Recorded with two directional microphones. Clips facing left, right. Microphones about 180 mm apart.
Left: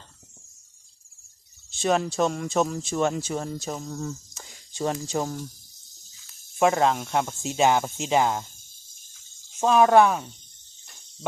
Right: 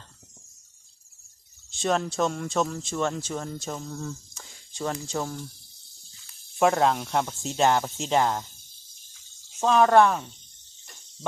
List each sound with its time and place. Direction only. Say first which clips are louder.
1.7 s speech: left 2 dB; 5° left (ahead or behind)
3.9 s a sound: left 2 dB; 5° left (ahead or behind)
5.0 s speech: left 3 dB; 15° left (ahead or behind)
6.6 s speech: left 1 dB; centre (ahead or behind)
9.6 s speech: left 1 dB; 5° left (ahead or behind)